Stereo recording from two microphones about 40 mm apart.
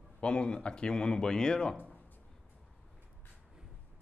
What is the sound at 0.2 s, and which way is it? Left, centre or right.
Speech, left.